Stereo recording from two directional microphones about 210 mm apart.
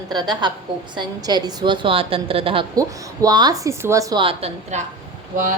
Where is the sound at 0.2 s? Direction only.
20° right (ahead or behind).